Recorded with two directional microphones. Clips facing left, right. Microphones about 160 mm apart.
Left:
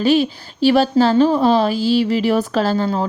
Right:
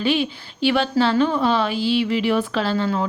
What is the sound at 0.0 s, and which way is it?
A woman's voice, 40° left (ahead or behind).